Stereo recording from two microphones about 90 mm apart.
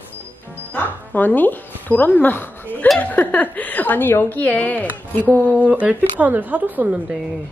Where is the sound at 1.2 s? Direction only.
20° left (ahead or behind).